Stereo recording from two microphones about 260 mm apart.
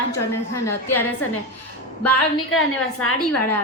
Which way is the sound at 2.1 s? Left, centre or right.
Left.